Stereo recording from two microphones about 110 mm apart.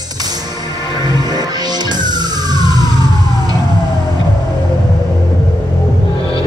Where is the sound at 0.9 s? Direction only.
40° right (ahead or behind).